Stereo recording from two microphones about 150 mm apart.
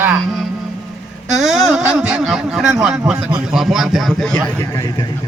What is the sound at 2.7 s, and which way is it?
A man's voice, 5° right (ahead or behind).